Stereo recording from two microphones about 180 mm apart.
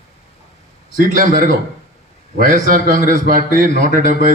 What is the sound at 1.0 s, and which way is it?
Speech, 50° right (ahead or behind).